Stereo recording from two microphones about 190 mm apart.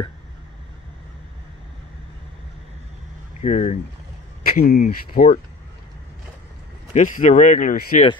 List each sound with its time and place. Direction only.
3.3 s speech: 35° left (ahead or behind)
4.6 s speech: 45° left (ahead or behind)
6.9 s speech: 40° left (ahead or behind)